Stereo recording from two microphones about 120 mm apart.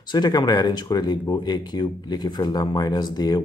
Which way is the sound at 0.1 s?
35° left (ahead or behind).